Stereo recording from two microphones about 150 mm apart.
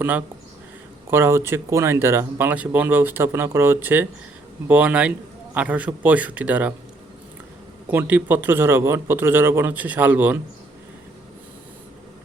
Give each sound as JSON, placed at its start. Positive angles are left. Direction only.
{"t": 0.0, "sound": "speech", "side_deg": -10}
{"t": 7.9, "sound": "speech", "side_deg": -10}